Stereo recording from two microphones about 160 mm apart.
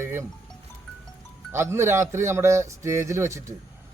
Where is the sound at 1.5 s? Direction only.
15° right (ahead or behind).